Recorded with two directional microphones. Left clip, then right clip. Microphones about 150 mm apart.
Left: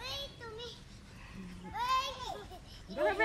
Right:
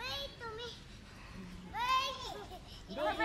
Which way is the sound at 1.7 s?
Centre (ahead or behind).